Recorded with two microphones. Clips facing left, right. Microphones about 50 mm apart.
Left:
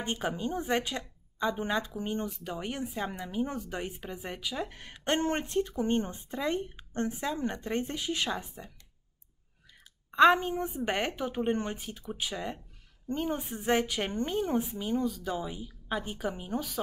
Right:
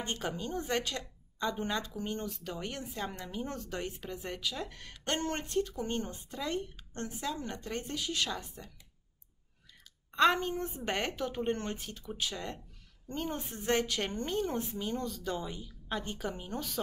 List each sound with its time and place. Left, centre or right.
0.0 s a woman's voice: centre
10.1 s speech: centre